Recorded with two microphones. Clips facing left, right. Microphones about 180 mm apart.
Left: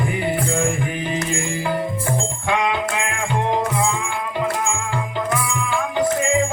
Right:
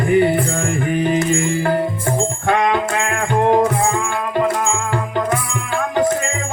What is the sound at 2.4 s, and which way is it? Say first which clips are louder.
Music: right 4 dB; 50° right (ahead or behind).